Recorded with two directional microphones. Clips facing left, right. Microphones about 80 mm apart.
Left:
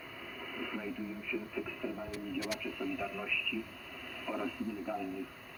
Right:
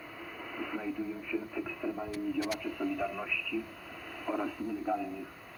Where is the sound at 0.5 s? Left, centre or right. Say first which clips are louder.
Right 3 dB; centre.